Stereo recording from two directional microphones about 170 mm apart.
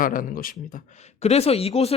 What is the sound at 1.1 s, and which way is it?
Speech, 40° left (ahead or behind).